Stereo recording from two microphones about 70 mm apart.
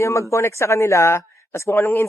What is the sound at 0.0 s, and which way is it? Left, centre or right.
Speech, left.